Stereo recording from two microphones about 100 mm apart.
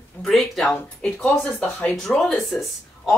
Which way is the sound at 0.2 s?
Centre (ahead or behind).